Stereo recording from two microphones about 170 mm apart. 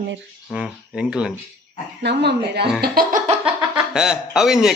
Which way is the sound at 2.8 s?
60° right (ahead or behind).